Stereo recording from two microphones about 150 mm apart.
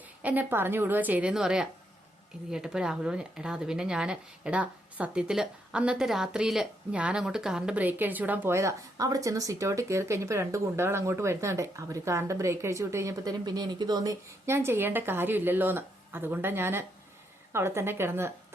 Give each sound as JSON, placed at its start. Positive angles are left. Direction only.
{"t": 0.2, "sound": "speech", "side_deg": -10}